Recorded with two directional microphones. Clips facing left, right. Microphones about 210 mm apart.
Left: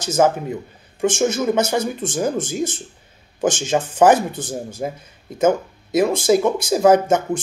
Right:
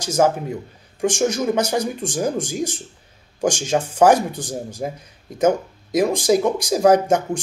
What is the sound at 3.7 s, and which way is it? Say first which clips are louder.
Speech: even; centre (ahead or behind).